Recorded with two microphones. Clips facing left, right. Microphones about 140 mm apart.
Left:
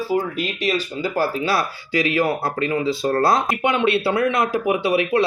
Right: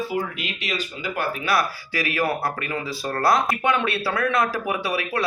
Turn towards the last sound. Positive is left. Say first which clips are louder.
# left 7 dB
turn(degrees=25)  # may be behind; listen again after turning